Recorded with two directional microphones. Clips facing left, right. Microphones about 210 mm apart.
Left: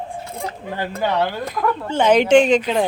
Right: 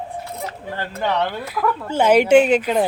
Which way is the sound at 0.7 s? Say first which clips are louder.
Left 2 dB; 10° left (ahead or behind).